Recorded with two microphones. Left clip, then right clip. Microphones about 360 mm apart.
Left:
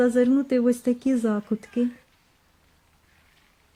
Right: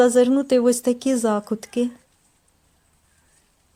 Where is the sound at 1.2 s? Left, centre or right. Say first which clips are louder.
Right 5 dB; right.